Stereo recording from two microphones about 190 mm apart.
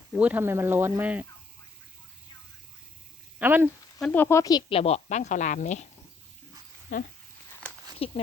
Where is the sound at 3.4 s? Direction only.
10° right (ahead or behind).